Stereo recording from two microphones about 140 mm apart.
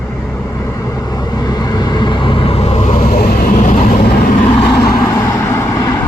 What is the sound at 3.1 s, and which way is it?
Vehicle, 75° left (ahead or behind).